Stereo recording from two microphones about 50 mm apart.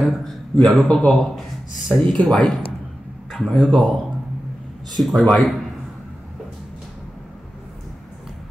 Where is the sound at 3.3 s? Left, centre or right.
Centre.